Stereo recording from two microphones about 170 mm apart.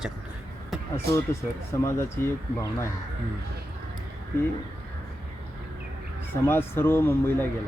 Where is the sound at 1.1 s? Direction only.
15° left (ahead or behind).